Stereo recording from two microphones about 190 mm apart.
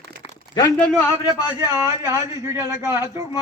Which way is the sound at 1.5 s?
15° right (ahead or behind).